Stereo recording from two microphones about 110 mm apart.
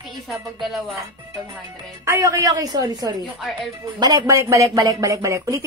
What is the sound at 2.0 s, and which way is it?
Speech, 25° right (ahead or behind).